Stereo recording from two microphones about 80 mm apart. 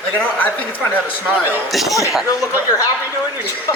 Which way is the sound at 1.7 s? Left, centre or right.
Centre.